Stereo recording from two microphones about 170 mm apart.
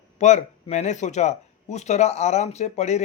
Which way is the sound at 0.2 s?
40° left (ahead or behind).